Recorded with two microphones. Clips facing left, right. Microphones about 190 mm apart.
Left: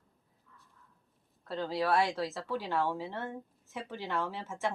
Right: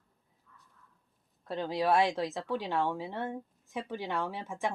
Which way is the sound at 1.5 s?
20° right (ahead or behind).